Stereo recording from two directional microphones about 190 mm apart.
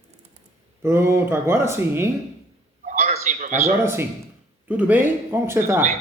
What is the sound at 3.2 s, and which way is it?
Speech, 40° right (ahead or behind).